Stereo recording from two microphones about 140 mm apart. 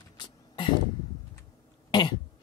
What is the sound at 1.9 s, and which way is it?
Cough, 30° left (ahead or behind).